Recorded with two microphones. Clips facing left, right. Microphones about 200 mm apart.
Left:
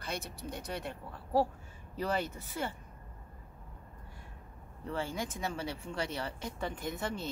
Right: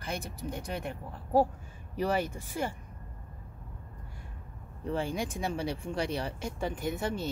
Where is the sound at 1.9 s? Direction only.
10° right (ahead or behind).